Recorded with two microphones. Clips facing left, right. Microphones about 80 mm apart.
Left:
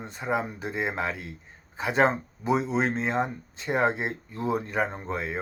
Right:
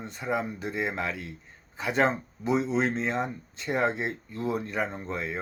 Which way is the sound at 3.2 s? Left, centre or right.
Left.